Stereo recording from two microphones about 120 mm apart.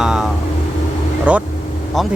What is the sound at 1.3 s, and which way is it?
Speech, 10° right (ahead or behind).